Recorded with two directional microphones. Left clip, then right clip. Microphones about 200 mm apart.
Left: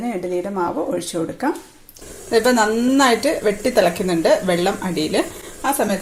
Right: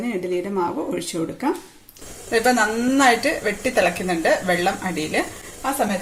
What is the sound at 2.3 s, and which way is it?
A woman's voice, 20° left (ahead or behind).